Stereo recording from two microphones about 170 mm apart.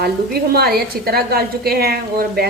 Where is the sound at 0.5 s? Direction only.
65° right (ahead or behind).